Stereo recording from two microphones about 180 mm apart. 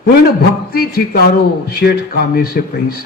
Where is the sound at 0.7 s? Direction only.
55° left (ahead or behind).